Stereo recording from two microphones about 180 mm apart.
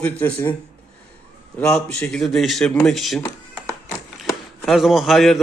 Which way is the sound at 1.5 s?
5° left (ahead or behind).